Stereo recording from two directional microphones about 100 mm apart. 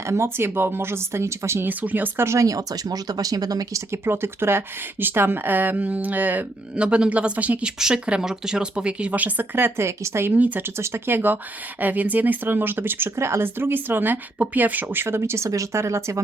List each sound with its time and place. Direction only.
0.1 s speech: 25° right (ahead or behind)